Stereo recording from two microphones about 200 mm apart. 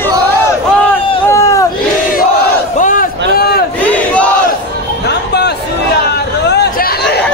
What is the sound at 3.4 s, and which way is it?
Crowd, 50° left (ahead or behind).